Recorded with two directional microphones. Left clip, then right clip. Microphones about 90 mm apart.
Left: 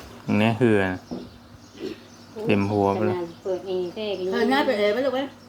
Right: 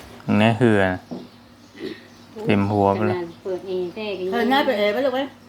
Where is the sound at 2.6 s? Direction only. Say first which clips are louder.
Right 5 dB; 50° right (ahead or behind).